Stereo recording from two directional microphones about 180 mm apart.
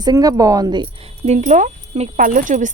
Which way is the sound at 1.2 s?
40° right (ahead or behind).